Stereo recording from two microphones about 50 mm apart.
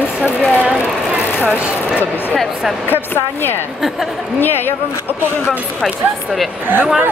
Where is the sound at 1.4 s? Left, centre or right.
Right.